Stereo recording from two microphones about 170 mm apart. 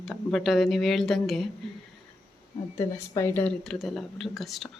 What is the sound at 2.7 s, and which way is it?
Speech, 15° left (ahead or behind).